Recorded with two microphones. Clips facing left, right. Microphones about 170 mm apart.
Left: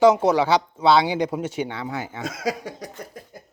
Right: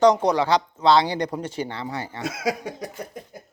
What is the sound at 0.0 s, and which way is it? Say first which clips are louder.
Speech: left 1 dB; 5° left (ahead or behind).